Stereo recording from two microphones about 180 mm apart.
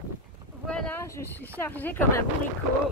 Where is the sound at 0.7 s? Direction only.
5° left (ahead or behind).